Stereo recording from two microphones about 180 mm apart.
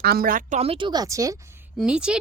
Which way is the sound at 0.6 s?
30° right (ahead or behind).